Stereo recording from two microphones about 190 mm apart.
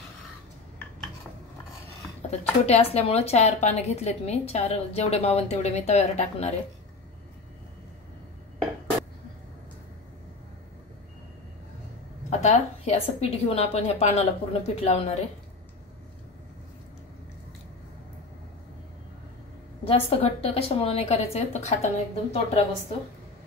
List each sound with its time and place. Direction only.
2.6 s a woman's voice: 35° left (ahead or behind)
12.3 s a woman's voice: 35° left (ahead or behind)
19.8 s a woman's voice: 30° left (ahead or behind)